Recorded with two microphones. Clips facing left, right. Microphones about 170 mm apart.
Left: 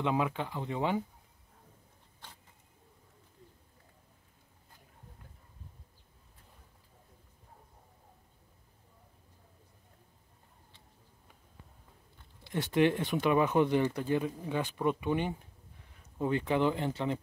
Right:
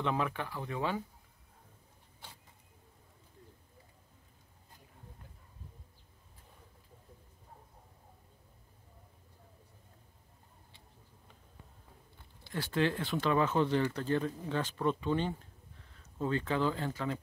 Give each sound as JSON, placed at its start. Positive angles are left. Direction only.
{"t": 0.0, "sound": "speech", "side_deg": 20}
{"t": 12.4, "sound": "speech", "side_deg": 20}